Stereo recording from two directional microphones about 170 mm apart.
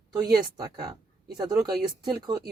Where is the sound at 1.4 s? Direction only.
25° right (ahead or behind).